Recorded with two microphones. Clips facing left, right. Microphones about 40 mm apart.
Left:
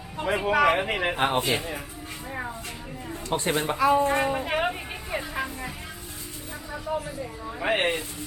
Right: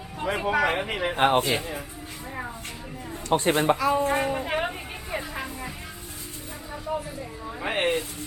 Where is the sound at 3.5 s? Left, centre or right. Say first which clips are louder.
Right 5 dB; centre.